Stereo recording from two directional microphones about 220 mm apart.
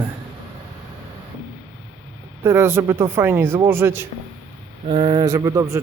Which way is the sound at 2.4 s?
10° right (ahead or behind).